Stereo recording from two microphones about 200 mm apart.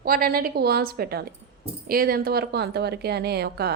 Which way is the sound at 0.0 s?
50° right (ahead or behind).